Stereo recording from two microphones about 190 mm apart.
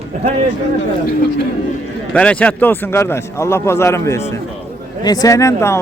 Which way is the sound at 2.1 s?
5° left (ahead or behind).